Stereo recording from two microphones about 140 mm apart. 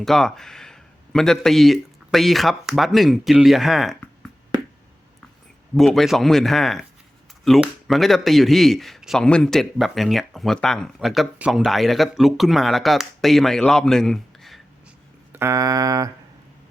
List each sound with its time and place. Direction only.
0.0 s speech: centre (ahead or behind)
5.7 s speech: centre (ahead or behind)
15.3 s music: 20° right (ahead or behind)